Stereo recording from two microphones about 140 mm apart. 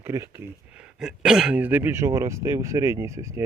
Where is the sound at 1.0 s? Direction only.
5° right (ahead or behind).